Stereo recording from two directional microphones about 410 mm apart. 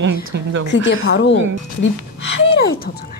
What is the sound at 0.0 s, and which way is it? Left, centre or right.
Speech, right.